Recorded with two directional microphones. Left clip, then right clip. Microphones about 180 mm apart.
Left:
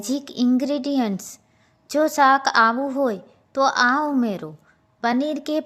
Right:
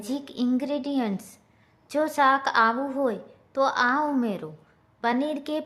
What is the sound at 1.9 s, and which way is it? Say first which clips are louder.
A woman's voice: left 5 dB; 30° left (ahead or behind).